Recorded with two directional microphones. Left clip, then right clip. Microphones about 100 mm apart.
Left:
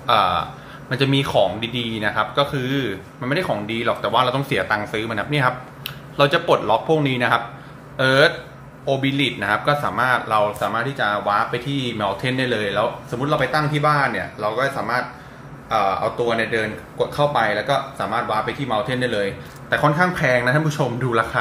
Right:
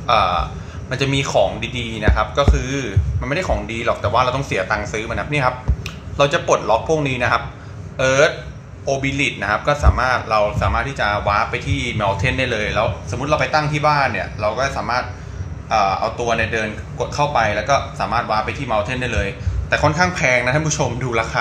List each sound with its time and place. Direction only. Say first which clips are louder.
0.0 s a man's voice: right 1 dB; 10° left (ahead or behind)